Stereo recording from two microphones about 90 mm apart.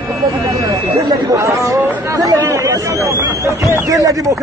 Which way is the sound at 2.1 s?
40° right (ahead or behind).